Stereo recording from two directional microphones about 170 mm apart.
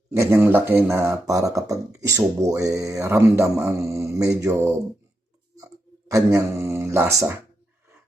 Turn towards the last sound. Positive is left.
turn(degrees=-15)  # may be behind; listen again after turning